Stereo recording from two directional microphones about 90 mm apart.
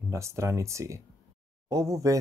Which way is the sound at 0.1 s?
35° right (ahead or behind).